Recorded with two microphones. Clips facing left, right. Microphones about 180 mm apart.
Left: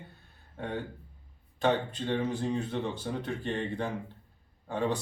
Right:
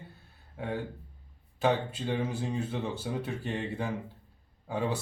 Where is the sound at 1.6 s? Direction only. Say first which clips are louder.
Even; 5° right (ahead or behind).